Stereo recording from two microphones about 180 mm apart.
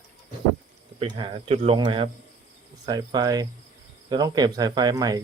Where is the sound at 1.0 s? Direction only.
30° right (ahead or behind).